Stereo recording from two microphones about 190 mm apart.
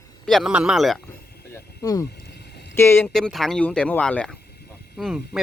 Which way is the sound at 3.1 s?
Centre (ahead or behind).